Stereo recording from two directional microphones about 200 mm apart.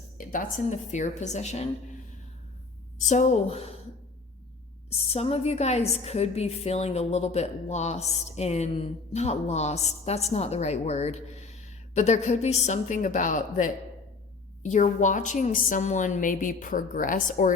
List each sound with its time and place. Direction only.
0.2 s speech: 45° left (ahead or behind)
3.1 s speech: 35° left (ahead or behind)
5.1 s speech: 30° left (ahead or behind)